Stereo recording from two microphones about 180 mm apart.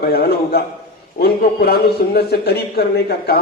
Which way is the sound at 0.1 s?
60° left (ahead or behind).